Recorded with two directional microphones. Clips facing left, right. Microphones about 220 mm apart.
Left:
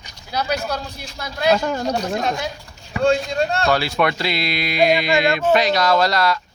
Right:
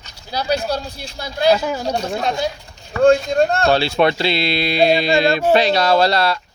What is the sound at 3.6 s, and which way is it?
Speech, 30° right (ahead or behind).